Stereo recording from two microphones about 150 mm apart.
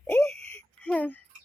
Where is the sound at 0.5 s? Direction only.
10° left (ahead or behind).